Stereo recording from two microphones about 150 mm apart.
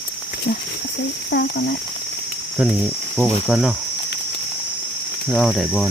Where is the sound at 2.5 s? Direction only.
10° right (ahead or behind).